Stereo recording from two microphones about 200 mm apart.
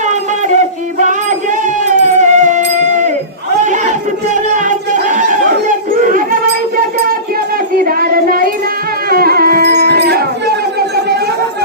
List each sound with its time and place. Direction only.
0.1 s music: 35° right (ahead or behind)
3.6 s crowd: 40° right (ahead or behind)
4.5 s a sound: 40° right (ahead or behind)
7.9 s child singing: 45° right (ahead or behind)
9.0 s music: 50° right (ahead or behind)